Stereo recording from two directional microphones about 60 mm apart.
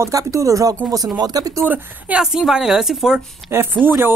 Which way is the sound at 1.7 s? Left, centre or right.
Right.